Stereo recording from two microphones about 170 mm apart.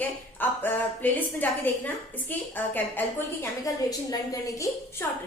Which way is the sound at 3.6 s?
20° left (ahead or behind).